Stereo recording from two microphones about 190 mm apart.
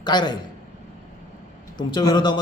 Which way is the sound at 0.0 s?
25° left (ahead or behind).